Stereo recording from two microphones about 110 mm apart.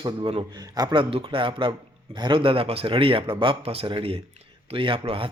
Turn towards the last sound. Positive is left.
turn(degrees=-55)  # may be behind; listen again after turning